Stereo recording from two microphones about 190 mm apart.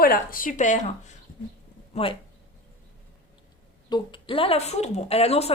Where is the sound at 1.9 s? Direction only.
30° left (ahead or behind).